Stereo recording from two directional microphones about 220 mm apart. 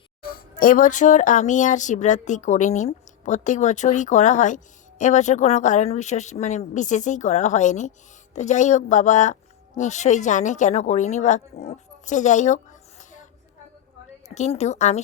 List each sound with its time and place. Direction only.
0.3 s speech: 40° left (ahead or behind)
14.3 s speech: 30° left (ahead or behind)